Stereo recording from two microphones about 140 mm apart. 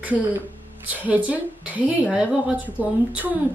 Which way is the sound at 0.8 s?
10° right (ahead or behind).